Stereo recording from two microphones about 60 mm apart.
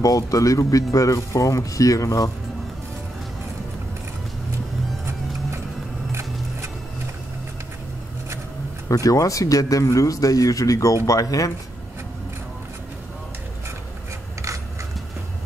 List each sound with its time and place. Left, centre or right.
0.0 s speech: left
8.8 s speech: left